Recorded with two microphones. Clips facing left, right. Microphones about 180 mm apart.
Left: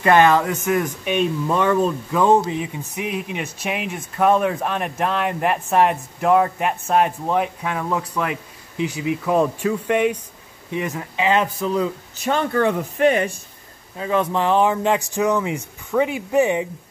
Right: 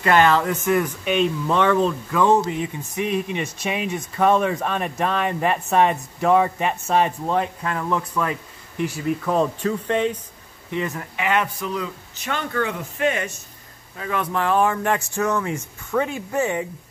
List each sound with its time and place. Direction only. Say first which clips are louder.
0.0 s speech: left 2 dB; 20° left (ahead or behind)
11.1 s speech: left 4 dB; 30° left (ahead or behind)